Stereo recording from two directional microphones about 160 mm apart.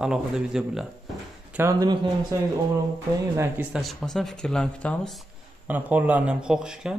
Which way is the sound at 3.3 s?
15° right (ahead or behind).